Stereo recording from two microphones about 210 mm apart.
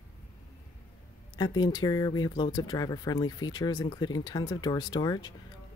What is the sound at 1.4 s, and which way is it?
Speech, 20° left (ahead or behind).